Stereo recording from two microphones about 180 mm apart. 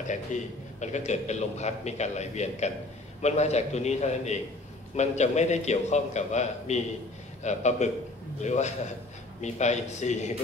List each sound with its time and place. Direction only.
0.1 s a man's voice: 40° left (ahead or behind)